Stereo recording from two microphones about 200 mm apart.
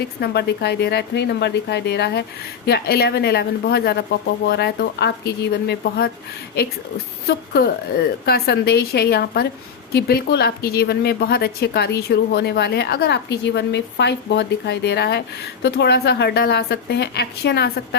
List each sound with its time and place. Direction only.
0.2 s speech: 55° left (ahead or behind)
7.3 s a woman's voice: 50° left (ahead or behind)